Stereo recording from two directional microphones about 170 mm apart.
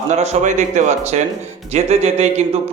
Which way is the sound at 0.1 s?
40° right (ahead or behind).